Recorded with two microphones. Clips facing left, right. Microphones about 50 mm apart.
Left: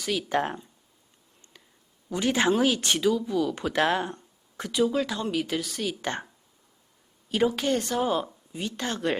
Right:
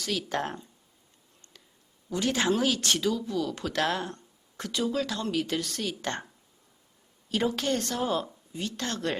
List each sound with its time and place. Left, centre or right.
0.0 s speech: centre
1.5 s a sound: centre
2.0 s speech: centre